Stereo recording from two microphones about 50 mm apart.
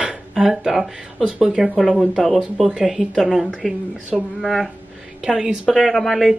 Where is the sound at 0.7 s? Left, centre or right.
Centre.